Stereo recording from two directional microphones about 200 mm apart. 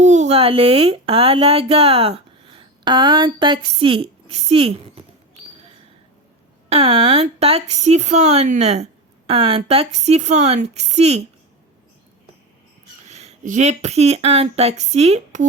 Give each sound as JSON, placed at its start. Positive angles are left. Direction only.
{"t": 0.0, "sound": "speech", "side_deg": -35}
{"t": 6.7, "sound": "speech", "side_deg": -30}
{"t": 13.1, "sound": "speech", "side_deg": -35}